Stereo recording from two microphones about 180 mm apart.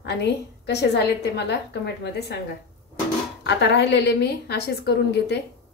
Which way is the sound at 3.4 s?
75° left (ahead or behind).